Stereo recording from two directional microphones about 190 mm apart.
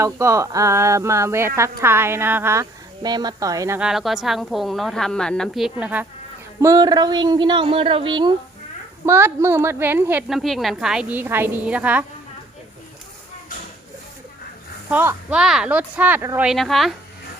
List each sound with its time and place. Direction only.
0.0 s speech: 15° right (ahead or behind)
3.8 s a woman's voice: 5° right (ahead or behind)
6.6 s a woman's voice: 20° right (ahead or behind)
9.0 s speech: 15° right (ahead or behind)
14.8 s speech: 10° right (ahead or behind)
16.5 s a woman's voice: centre (ahead or behind)